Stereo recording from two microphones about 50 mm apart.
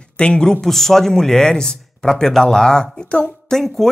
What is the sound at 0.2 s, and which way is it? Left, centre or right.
Speech, centre.